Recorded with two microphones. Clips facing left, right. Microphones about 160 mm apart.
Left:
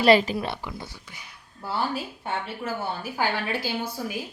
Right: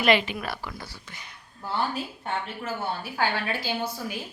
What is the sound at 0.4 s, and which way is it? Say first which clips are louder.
Speech: left 2 dB; 25° left (ahead or behind).